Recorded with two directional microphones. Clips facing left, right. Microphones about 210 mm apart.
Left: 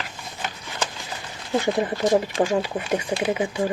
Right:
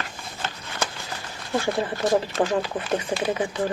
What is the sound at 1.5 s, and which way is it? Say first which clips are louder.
Speech: left 2 dB; 15° left (ahead or behind).